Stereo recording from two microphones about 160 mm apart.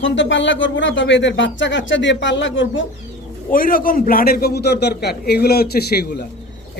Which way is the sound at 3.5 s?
60° left (ahead or behind).